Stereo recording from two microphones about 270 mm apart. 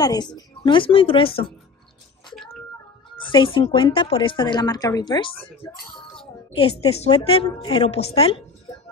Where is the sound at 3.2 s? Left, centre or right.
Centre.